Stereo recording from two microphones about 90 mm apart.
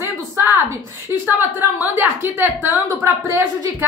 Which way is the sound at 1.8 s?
20° right (ahead or behind).